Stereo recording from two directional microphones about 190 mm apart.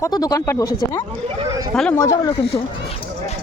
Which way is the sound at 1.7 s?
5° left (ahead or behind).